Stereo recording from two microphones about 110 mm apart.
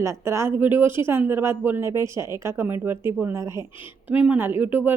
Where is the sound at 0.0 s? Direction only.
25° right (ahead or behind).